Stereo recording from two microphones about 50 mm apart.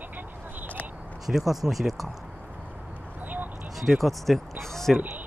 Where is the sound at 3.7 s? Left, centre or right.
Centre.